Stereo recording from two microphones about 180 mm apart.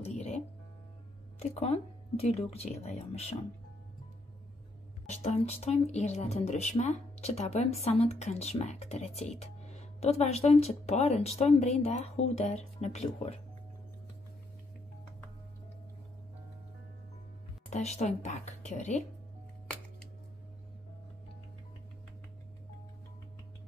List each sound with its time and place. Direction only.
0.0 s music: 35° left (ahead or behind)
1.4 s speech: 35° left (ahead or behind)
5.0 s speech: 35° left (ahead or behind)
17.6 s speech: 40° left (ahead or behind)